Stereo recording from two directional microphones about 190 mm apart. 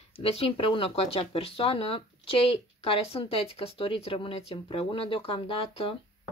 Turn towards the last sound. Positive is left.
turn(degrees=30)  # may be behind; listen again after turning